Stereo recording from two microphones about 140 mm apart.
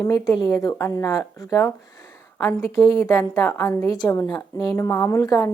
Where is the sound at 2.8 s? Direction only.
25° left (ahead or behind).